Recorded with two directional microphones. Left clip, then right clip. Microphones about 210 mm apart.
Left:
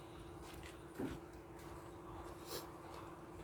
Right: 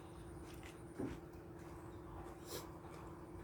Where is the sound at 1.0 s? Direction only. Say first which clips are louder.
Left 1 dB; 35° left (ahead or behind).